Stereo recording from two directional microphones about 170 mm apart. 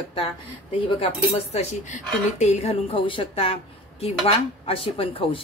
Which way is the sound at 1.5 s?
40° left (ahead or behind).